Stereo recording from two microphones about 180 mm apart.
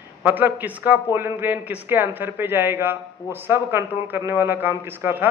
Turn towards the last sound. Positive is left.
turn(degrees=-10)  # may be behind; listen again after turning